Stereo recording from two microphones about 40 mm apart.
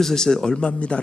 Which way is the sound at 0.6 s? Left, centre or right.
Left.